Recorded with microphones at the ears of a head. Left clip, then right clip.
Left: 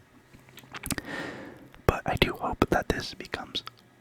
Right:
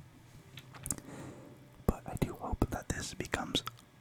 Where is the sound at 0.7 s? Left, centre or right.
Left.